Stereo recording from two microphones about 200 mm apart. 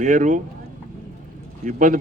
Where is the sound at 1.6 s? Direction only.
40° right (ahead or behind).